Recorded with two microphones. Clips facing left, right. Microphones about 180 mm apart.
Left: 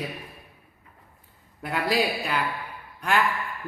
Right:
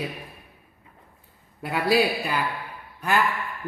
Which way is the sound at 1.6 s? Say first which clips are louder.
Right 3 dB; 10° right (ahead or behind).